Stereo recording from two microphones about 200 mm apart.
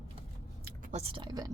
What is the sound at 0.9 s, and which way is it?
Speech, 30° right (ahead or behind).